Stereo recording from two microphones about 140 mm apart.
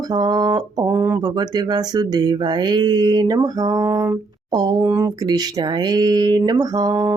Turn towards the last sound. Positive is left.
turn(degrees=-25)  # may be behind; listen again after turning